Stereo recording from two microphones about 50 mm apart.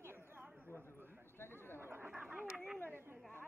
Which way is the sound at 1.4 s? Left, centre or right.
Left.